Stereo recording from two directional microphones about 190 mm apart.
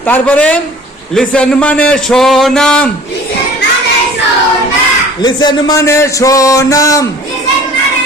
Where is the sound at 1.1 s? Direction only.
5° left (ahead or behind).